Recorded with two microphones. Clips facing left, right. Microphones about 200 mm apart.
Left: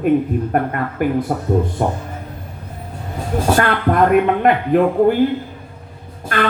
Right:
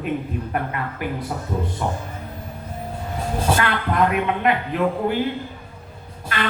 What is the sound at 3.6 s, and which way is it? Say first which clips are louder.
A man's voice: left 7 dB; 50° left (ahead or behind).